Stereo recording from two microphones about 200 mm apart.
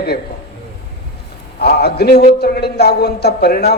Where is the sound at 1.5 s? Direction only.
55° left (ahead or behind).